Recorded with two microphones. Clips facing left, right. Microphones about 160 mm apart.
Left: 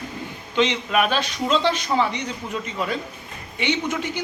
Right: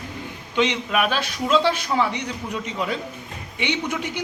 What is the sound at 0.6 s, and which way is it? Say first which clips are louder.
A man's voice: left 1 dB; 10° right (ahead or behind).